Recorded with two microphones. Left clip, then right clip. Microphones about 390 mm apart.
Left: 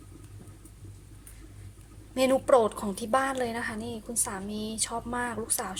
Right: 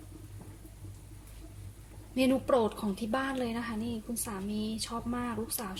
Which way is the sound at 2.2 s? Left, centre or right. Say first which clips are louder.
Left 5 dB; centre.